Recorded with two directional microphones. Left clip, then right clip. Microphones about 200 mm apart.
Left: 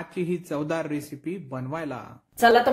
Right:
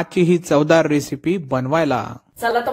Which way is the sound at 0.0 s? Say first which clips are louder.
Right 12 dB; 45° right (ahead or behind).